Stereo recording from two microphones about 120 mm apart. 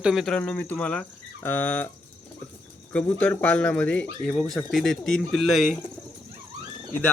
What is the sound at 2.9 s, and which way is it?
Speech, 10° left (ahead or behind).